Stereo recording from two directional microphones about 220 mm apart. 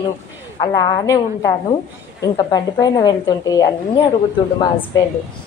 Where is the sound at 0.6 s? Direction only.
20° left (ahead or behind).